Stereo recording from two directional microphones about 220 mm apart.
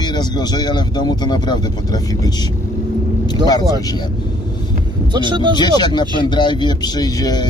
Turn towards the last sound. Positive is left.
turn(degrees=20)  # may be behind; listen again after turning